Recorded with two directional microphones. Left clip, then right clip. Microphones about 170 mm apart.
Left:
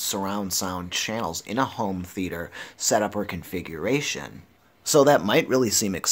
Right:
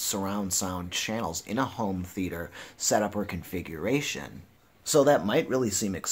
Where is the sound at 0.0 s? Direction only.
25° left (ahead or behind).